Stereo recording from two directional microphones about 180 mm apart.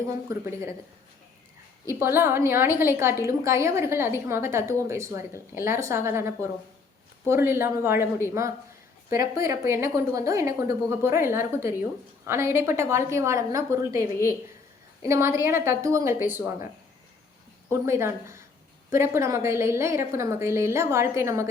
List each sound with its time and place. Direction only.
0.0 s a woman's voice: 15° right (ahead or behind)
1.9 s a woman's voice: 15° right (ahead or behind)
17.7 s a woman's voice: 15° right (ahead or behind)